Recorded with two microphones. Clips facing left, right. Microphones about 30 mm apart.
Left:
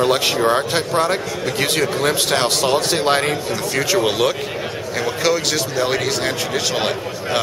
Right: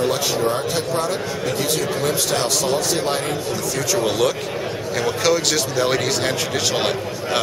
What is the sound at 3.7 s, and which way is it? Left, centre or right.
Speech, left.